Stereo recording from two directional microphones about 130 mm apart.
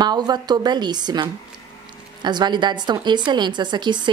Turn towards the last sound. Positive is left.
turn(degrees=-35)  # may be behind; listen again after turning